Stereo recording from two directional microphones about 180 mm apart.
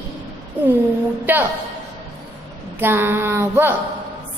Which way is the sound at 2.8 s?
10° right (ahead or behind).